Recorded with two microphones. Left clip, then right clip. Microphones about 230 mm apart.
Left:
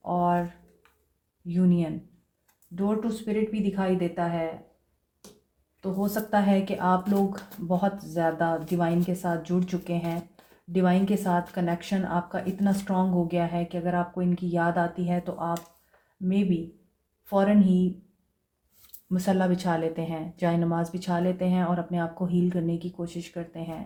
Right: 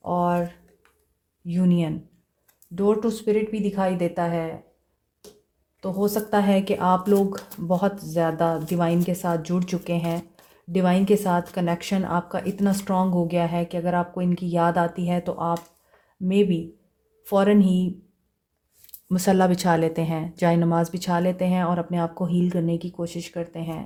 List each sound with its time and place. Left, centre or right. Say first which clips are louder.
0.0 s a sound: right 2 dB; right
1.5 s speech: right 2 dB; right
5.8 s speech: right 5 dB; right
19.0 s speech: right 6 dB; right